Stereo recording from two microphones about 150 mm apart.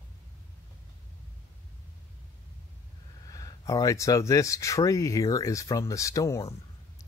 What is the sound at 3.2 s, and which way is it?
Speech, 25° left (ahead or behind).